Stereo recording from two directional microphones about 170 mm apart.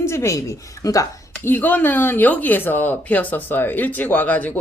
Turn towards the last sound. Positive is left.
turn(degrees=10)  # may be behind; listen again after turning